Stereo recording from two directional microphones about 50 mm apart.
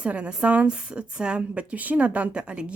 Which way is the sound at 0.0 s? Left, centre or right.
Right.